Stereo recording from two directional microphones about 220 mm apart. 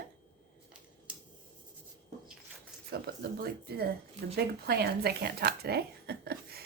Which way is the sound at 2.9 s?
45° right (ahead or behind).